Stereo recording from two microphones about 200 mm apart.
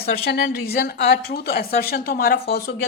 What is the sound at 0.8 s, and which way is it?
A woman's voice, 55° left (ahead or behind).